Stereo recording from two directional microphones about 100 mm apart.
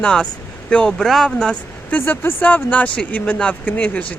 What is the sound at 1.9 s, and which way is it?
Speech, 20° left (ahead or behind).